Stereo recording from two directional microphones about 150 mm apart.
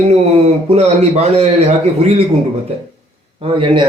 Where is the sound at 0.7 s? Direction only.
50° right (ahead or behind).